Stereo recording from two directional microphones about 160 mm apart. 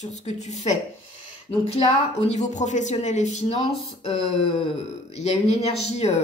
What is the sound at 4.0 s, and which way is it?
A woman's voice, 35° left (ahead or behind).